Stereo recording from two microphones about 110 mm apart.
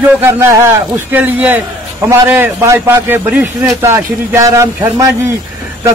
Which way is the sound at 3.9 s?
30° right (ahead or behind).